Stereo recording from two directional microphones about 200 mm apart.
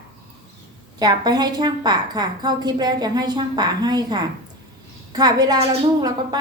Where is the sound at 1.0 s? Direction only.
20° right (ahead or behind).